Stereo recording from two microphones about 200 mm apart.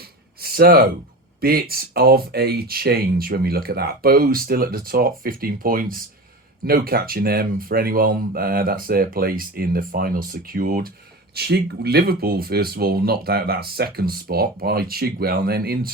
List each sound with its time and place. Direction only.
0.4 s speech: 50° right (ahead or behind)